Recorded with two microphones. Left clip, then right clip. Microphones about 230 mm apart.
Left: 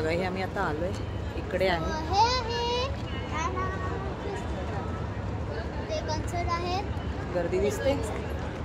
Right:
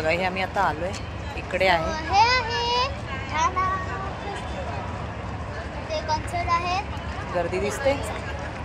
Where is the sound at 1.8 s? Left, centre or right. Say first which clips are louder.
Right 5 dB; right.